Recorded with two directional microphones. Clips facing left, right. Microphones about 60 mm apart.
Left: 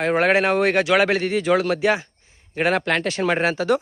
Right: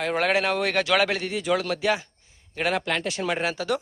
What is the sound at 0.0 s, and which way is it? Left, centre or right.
Speech, left.